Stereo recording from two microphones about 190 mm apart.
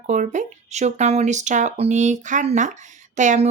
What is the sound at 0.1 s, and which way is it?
Speech, 40° right (ahead or behind).